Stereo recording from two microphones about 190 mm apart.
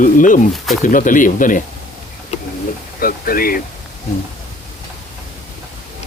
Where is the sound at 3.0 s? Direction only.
50° left (ahead or behind).